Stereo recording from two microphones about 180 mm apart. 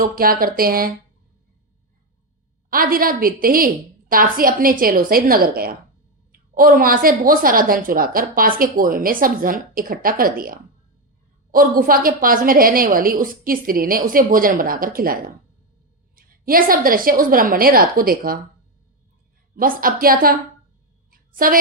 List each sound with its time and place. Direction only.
0.0 s a woman's voice: 55° right (ahead or behind)
2.6 s a woman's voice: 50° right (ahead or behind)
19.5 s a woman's voice: 50° right (ahead or behind)
21.1 s a sound: 50° right (ahead or behind)